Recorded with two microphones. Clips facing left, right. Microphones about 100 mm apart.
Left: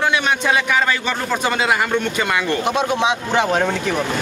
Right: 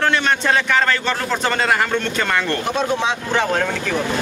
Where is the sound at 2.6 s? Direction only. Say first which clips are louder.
Left 2 dB; 20° left (ahead or behind).